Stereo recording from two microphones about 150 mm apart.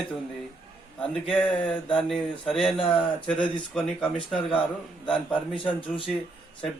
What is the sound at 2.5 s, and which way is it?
A man's voice, centre (ahead or behind).